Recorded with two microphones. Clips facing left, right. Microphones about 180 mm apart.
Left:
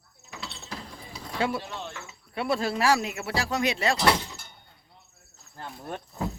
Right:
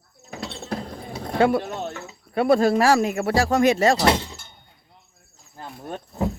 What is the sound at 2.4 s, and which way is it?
Speech, 50° right (ahead or behind).